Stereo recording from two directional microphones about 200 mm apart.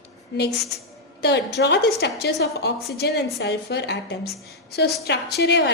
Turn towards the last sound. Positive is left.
turn(degrees=55)  # may be behind; listen again after turning